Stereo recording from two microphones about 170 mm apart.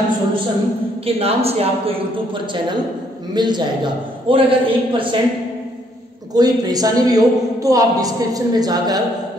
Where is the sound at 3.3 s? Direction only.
25° right (ahead or behind).